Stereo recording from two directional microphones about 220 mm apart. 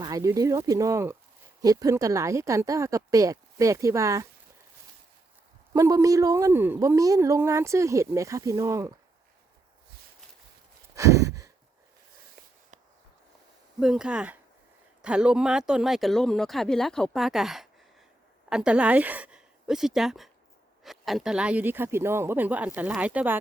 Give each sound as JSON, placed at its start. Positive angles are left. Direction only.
{"t": 0.0, "sound": "a woman's voice", "side_deg": -15}
{"t": 5.7, "sound": "a woman's voice", "side_deg": -15}
{"t": 10.9, "sound": "sigh", "side_deg": -15}
{"t": 13.7, "sound": "a woman's voice", "side_deg": -5}